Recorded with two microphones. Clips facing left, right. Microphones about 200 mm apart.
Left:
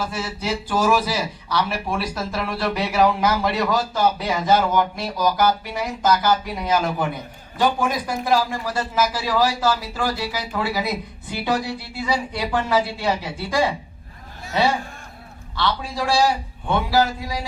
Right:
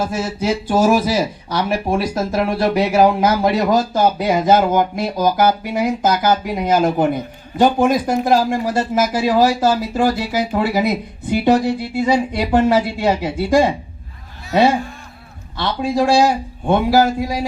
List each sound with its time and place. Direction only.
0.0 s speech: 45° right (ahead or behind)